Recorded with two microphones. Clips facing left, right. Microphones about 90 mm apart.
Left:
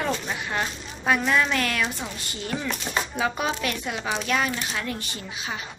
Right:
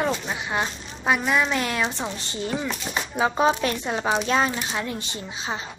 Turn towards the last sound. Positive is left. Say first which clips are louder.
# right 3 dB
turn(degrees=-25)  # may be behind; listen again after turning